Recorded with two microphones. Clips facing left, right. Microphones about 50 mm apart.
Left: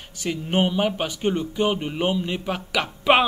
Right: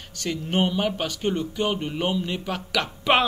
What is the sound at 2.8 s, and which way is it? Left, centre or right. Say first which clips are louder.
Music: left 3 dB; centre.